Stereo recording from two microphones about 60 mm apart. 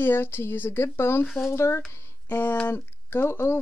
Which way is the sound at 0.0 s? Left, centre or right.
Left.